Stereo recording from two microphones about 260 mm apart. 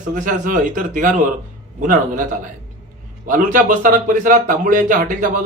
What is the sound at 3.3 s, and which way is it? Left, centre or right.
A man's voice, right.